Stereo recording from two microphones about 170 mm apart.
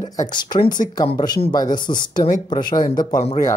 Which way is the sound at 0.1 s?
25° left (ahead or behind).